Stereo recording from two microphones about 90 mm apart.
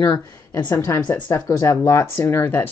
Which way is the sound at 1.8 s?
30° left (ahead or behind).